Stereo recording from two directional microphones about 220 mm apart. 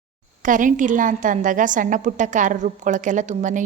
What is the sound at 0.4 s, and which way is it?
A woman's voice, 35° right (ahead or behind).